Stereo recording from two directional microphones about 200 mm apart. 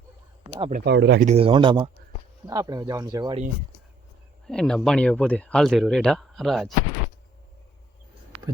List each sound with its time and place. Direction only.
0.4 s speech: 20° right (ahead or behind)
0.9 s speech: 60° right (ahead or behind)
1.2 s speech: 30° right (ahead or behind)
4.4 s speech: 5° left (ahead or behind)